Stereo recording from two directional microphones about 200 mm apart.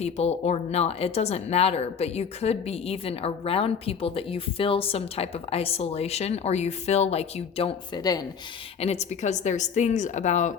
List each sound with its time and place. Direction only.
0.0 s speech: 30° left (ahead or behind)
8.8 s speech: 35° left (ahead or behind)